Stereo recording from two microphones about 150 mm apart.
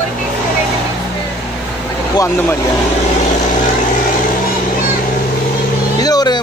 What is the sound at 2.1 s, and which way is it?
Speech, 15° left (ahead or behind).